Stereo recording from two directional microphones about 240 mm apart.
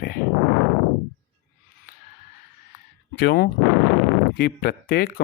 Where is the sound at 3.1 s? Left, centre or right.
Left.